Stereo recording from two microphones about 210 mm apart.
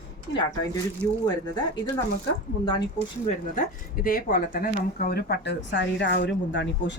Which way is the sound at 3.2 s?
40° left (ahead or behind).